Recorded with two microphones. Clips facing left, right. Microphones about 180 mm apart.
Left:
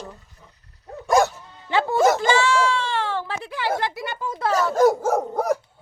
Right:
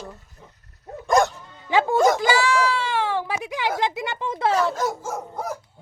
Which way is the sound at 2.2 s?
10° right (ahead or behind).